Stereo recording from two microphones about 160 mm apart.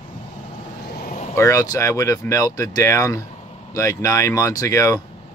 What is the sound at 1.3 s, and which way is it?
Speech, 20° left (ahead or behind).